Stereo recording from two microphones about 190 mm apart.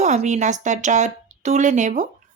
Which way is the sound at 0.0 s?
35° right (ahead or behind).